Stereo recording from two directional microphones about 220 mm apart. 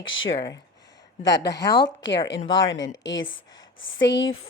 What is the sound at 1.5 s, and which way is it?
Speech, 15° left (ahead or behind).